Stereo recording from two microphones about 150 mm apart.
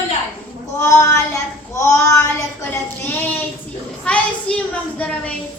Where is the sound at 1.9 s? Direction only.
20° left (ahead or behind).